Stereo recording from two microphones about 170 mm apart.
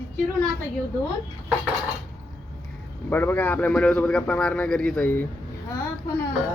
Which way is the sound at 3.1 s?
10° left (ahead or behind).